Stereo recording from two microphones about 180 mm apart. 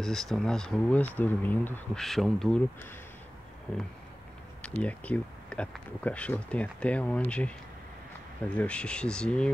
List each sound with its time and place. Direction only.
0.0 s speech: centre (ahead or behind)
4.6 s speech: 5° left (ahead or behind)
8.5 s speech: 5° left (ahead or behind)